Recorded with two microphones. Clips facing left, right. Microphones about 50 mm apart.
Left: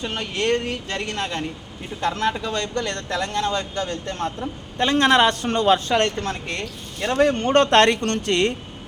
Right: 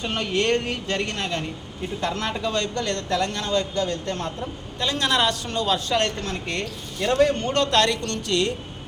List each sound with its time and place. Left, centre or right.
0.0 s a man's voice: centre; by 4.3 s left
4.8 s a man's voice: left
6.5 s speech: centre
7.1 s a man's voice: left
7.5 s a man's voice: left